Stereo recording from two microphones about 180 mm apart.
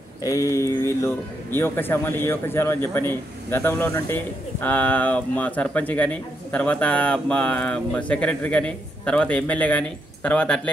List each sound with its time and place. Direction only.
0.2 s speech: 20° left (ahead or behind)